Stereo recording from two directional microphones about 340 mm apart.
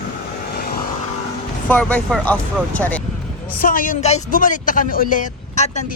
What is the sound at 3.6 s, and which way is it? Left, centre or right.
Speech, left.